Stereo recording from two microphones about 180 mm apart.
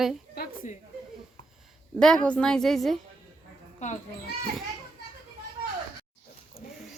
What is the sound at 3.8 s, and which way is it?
Speech, 40° left (ahead or behind).